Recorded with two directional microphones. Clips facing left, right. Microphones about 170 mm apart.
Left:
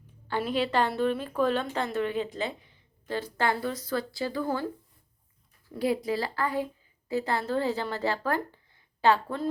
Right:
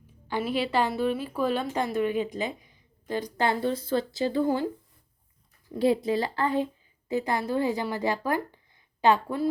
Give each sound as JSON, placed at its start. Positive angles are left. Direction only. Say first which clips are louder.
{"t": 0.3, "sound": "a woman's voice", "louder": "even", "side_deg": -10}